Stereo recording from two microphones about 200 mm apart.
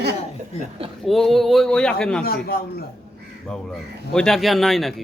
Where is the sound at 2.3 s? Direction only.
50° left (ahead or behind).